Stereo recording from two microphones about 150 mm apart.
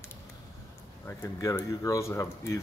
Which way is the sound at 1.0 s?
15° left (ahead or behind).